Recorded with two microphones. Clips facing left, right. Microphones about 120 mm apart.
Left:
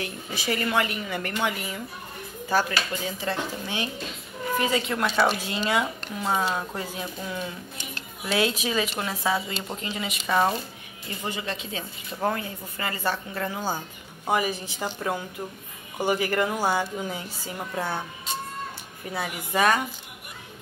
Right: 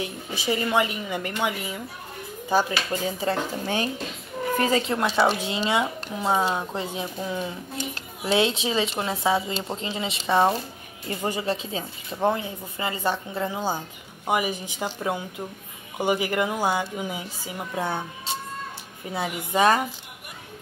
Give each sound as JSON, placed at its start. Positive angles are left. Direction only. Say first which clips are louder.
{"t": 0.0, "sound": "speech", "louder": "right 2 dB", "side_deg": -20}
{"t": 2.9, "sound": "speech", "louder": "right 4 dB", "side_deg": -35}
{"t": 3.6, "sound": "speech", "louder": "right 4 dB", "side_deg": -45}
{"t": 11.1, "sound": "speech", "louder": "right 5 dB", "side_deg": -35}
{"t": 12.2, "sound": "speech", "louder": "right 3 dB", "side_deg": -20}
{"t": 19.0, "sound": "speech", "louder": "right 2 dB", "side_deg": -20}